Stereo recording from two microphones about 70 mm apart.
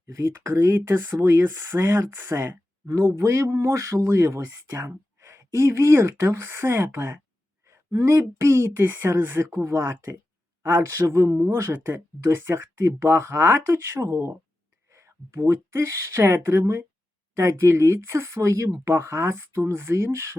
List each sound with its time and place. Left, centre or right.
0.0 s speech: right